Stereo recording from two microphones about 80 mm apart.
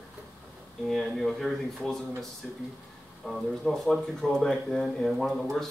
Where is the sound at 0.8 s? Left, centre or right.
Centre.